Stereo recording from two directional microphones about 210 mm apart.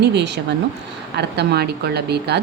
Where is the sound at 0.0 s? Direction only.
55° right (ahead or behind).